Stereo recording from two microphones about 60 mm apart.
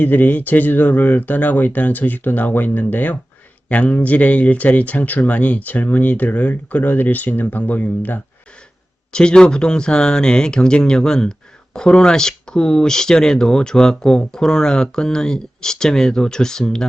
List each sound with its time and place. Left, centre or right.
0.0 s speech: left
9.1 s speech: centre